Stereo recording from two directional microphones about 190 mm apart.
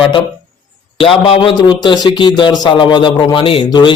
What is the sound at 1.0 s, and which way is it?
A man's voice, 25° left (ahead or behind).